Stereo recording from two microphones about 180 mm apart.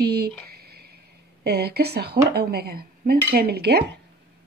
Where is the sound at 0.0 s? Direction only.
60° right (ahead or behind).